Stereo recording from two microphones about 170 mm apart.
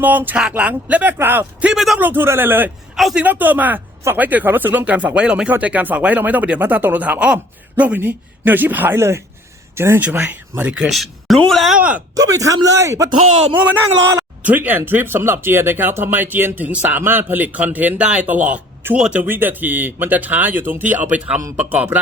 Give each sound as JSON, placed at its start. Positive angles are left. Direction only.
{"t": 0.0, "sound": "speech", "side_deg": -10}
{"t": 2.9, "sound": "speech", "side_deg": 0}
{"t": 10.9, "sound": "a sound", "side_deg": 0}
{"t": 11.4, "sound": "speech", "side_deg": 0}
{"t": 12.1, "sound": "a man's voice", "side_deg": -20}
{"t": 14.4, "sound": "speech", "side_deg": -10}